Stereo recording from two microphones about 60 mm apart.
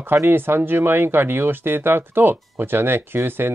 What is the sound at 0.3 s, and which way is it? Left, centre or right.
Speech, right.